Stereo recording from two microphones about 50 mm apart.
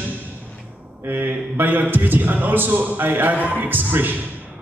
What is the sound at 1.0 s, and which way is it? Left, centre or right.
A man's voice, right.